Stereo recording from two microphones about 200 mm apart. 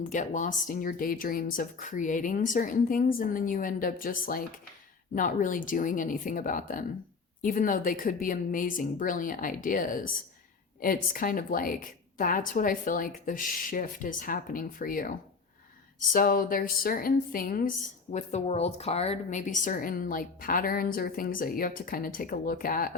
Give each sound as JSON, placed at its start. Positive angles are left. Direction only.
{"t": 0.1, "sound": "a woman's voice", "side_deg": 40}
{"t": 18.1, "sound": "a woman's voice", "side_deg": 35}